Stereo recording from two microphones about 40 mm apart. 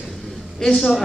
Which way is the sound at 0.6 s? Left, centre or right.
Centre.